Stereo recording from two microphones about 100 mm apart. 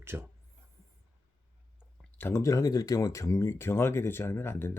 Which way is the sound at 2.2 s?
25° left (ahead or behind).